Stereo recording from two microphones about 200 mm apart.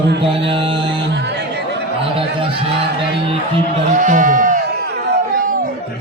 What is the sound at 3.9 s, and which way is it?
Speech, 40° right (ahead or behind).